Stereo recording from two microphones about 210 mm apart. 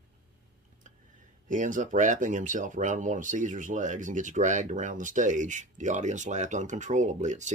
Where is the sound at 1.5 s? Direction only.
35° right (ahead or behind).